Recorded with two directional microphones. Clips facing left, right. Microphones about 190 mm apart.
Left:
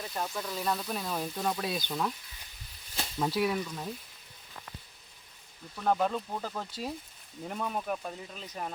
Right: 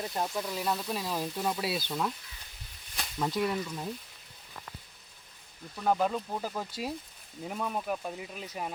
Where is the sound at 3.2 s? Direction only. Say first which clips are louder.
Left 1 dB; 5° left (ahead or behind).